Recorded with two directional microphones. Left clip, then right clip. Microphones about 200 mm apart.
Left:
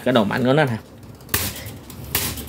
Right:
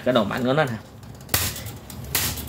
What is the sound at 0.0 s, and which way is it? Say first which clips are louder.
Speech: left 3 dB; 35° left (ahead or behind).